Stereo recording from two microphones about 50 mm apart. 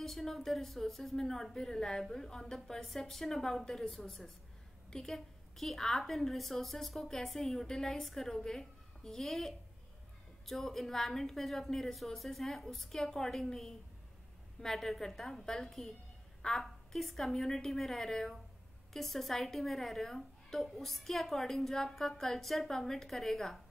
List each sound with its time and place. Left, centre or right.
0.0 s a woman's voice: centre